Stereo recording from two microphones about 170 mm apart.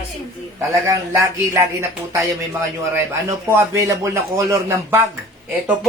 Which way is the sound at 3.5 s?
15° right (ahead or behind).